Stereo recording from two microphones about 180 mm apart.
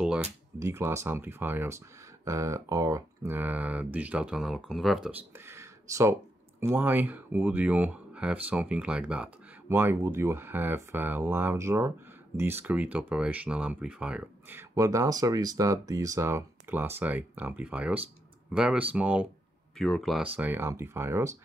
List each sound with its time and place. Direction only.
0.6 s speech: 15° right (ahead or behind)
5.5 s a sound: 15° right (ahead or behind)
6.6 s speech: 10° right (ahead or behind)
20.3 s speech: 10° right (ahead or behind)